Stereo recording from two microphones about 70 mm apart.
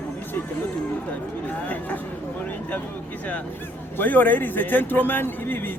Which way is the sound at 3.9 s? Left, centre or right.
Left.